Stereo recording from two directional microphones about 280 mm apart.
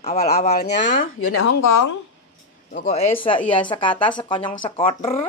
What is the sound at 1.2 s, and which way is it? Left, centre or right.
Speech, left.